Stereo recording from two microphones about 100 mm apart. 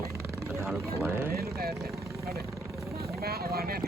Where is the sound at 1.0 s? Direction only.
25° right (ahead or behind).